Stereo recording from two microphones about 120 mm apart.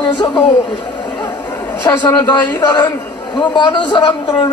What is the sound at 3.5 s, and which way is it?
A man's voice, 40° left (ahead or behind).